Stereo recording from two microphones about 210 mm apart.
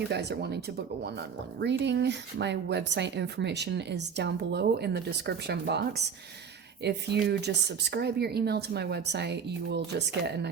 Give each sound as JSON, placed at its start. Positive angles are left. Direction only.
{"t": 0.1, "sound": "speech", "side_deg": -55}
{"t": 1.8, "sound": "speech", "side_deg": -55}